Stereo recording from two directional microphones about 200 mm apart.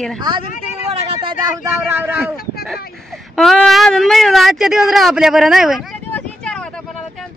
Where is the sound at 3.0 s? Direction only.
Centre (ahead or behind).